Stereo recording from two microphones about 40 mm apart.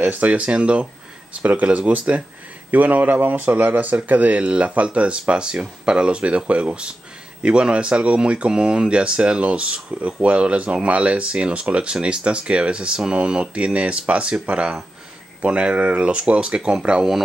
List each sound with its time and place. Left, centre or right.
0.1 s speech: right